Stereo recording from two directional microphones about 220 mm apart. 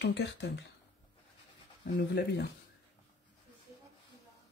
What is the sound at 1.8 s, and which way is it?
Speech, 45° left (ahead or behind).